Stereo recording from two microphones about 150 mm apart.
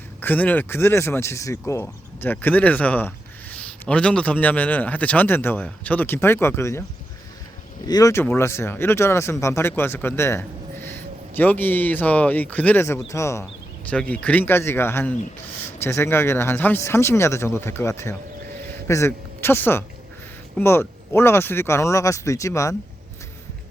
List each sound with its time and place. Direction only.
0.2 s speech: 10° left (ahead or behind)
7.9 s speech: 25° left (ahead or behind)
13.9 s speech: 10° left (ahead or behind)